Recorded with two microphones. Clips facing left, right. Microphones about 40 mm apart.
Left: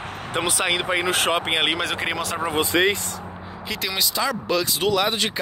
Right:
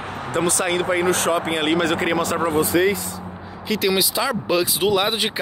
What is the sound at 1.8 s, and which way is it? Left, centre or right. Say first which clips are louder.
Speech: right 5 dB; centre.